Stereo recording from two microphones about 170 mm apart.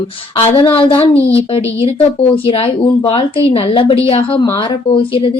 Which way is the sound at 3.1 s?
35° left (ahead or behind).